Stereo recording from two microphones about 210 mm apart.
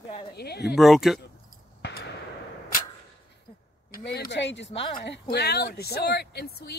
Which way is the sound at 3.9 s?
45° left (ahead or behind).